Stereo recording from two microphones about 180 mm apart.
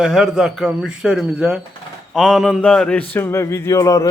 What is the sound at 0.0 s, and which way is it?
A man's voice, centre (ahead or behind).